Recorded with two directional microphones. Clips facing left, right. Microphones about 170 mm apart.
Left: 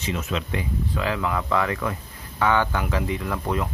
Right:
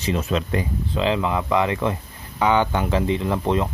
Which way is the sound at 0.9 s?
20° right (ahead or behind).